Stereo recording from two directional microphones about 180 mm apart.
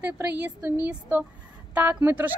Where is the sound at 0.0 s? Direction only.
10° right (ahead or behind).